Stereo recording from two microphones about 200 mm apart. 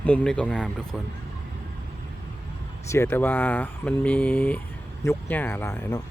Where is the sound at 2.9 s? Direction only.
10° left (ahead or behind).